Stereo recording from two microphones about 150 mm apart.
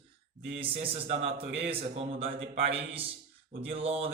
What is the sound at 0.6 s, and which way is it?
Speech, 40° right (ahead or behind).